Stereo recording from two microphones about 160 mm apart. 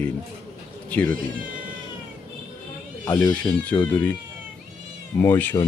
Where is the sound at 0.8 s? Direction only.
10° left (ahead or behind).